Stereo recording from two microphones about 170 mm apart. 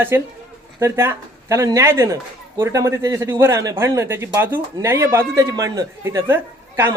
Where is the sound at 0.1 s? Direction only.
15° right (ahead or behind).